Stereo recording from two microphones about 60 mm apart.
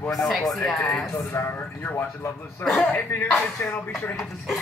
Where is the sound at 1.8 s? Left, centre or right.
Left.